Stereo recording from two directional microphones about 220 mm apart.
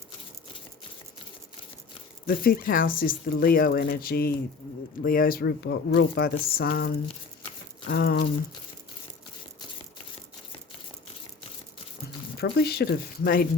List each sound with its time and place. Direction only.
2.2 s speech: 40° left (ahead or behind)
12.4 s speech: 45° left (ahead or behind)